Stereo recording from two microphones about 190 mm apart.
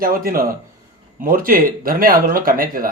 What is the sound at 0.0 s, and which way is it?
Speech, 50° right (ahead or behind).